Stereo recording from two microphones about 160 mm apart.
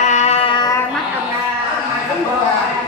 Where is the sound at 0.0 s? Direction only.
45° left (ahead or behind).